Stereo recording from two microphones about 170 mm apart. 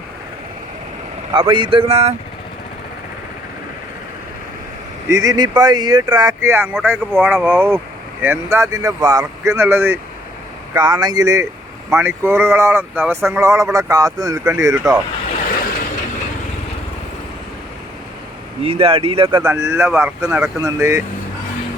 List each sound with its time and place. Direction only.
1.3 s speech: 30° right (ahead or behind)
5.0 s speech: 20° right (ahead or behind)
10.8 s speech: 25° right (ahead or behind)
18.6 s speech: 35° right (ahead or behind)
19.5 s speech: 15° right (ahead or behind)